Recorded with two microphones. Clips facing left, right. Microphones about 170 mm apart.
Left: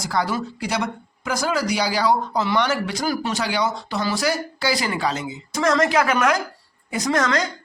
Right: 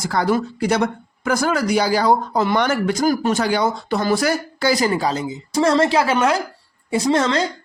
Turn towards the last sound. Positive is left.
turn(degrees=-25)  # may be behind; listen again after turning